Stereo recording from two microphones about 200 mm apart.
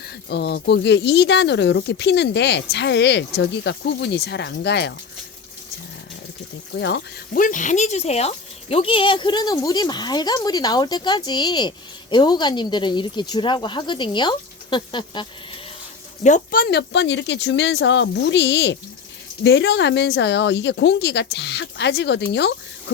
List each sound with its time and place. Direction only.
0.3 s speech: 55° left (ahead or behind)
6.7 s speech: 60° left (ahead or behind)
7.3 s speech: 40° left (ahead or behind); by 15.3 s 25° left (ahead or behind)
16.2 s speech: 40° left (ahead or behind); by 22.5 s 60° left (ahead or behind)